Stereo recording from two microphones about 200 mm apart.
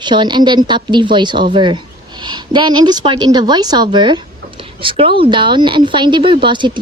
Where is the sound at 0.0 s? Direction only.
20° right (ahead or behind).